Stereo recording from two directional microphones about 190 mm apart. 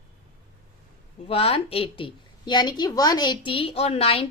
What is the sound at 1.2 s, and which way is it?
A woman's voice, 30° left (ahead or behind).